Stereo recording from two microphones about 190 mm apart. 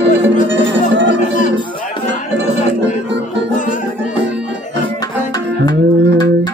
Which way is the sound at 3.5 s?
40° left (ahead or behind).